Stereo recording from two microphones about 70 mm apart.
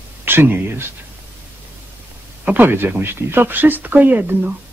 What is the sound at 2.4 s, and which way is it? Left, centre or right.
A man's voice, right.